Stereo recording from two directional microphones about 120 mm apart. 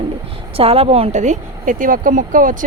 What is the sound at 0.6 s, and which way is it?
Speech, 55° right (ahead or behind).